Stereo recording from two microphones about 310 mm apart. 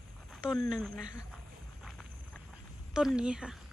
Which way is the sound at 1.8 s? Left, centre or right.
Centre.